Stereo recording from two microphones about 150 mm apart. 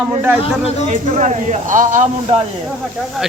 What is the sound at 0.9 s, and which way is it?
Speech, 55° right (ahead or behind).